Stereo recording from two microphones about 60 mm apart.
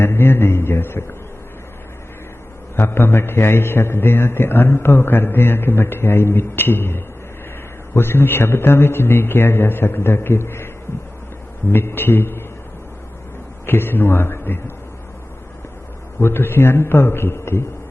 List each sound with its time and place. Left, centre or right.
0.0 s a man's voice: left
2.7 s a man's voice: left
11.7 s a man's voice: left
13.7 s a man's voice: left
16.2 s a man's voice: left